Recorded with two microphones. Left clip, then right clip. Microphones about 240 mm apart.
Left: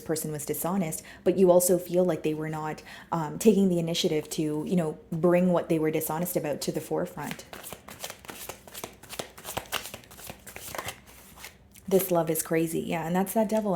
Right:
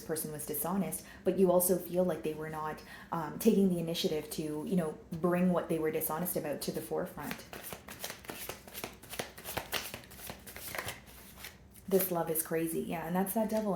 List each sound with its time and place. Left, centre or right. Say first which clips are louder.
0.1 s a woman's voice: left 7 dB; left
8.0 s shuffling cards: left 3 dB; left
10.7 s a sound: left 4 dB; left
11.9 s a woman's voice: left 7 dB; left